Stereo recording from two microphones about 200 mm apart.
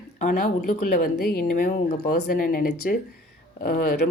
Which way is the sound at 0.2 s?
45° left (ahead or behind).